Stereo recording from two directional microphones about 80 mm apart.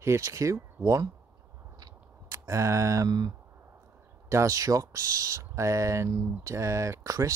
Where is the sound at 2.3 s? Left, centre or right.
Right.